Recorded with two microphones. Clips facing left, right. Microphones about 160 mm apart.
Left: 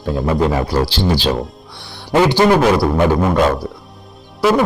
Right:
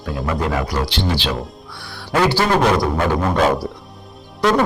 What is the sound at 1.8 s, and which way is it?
Speech, 25° left (ahead or behind).